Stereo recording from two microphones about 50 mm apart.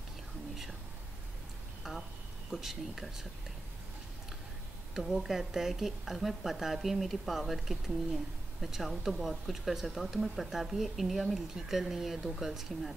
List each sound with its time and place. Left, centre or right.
1.8 s speech: centre
4.9 s speech: centre